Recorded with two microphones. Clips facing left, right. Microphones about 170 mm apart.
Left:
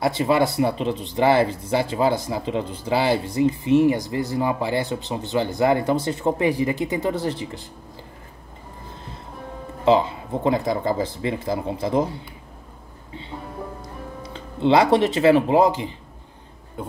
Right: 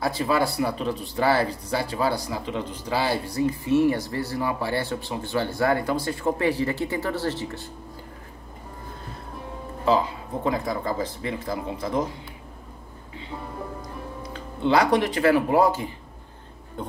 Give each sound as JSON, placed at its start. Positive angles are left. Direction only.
{"t": 0.0, "sound": "speech", "side_deg": 20}
{"t": 9.8, "sound": "speech", "side_deg": 25}
{"t": 14.3, "sound": "speech", "side_deg": 25}